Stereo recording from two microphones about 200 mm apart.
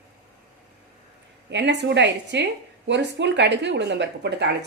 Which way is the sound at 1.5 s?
60° right (ahead or behind).